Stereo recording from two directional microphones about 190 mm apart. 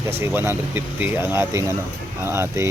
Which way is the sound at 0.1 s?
10° right (ahead or behind).